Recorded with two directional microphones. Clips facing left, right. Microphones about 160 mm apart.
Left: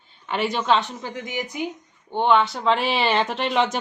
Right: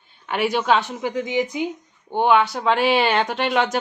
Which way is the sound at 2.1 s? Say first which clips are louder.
Right 2 dB; 5° right (ahead or behind).